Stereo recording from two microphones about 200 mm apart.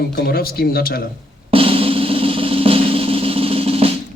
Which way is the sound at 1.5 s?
30° right (ahead or behind).